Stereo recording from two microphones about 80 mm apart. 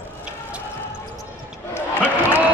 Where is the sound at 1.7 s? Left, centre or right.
Left.